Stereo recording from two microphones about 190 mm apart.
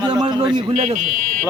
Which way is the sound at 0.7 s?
40° right (ahead or behind).